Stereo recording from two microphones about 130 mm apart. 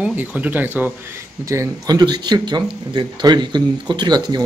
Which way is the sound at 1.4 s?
25° right (ahead or behind).